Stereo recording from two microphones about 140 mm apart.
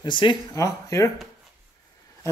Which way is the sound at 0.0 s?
35° left (ahead or behind).